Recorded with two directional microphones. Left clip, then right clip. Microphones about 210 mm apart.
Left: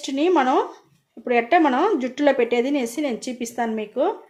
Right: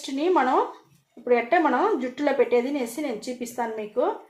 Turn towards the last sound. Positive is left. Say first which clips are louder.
# left 3 dB
turn(degrees=55)  # may be behind; listen again after turning